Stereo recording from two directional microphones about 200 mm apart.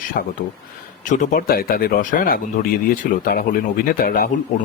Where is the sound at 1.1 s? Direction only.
40° left (ahead or behind).